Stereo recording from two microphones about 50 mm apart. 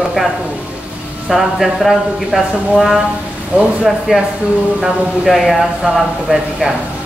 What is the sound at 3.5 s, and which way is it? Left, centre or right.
Speech, right.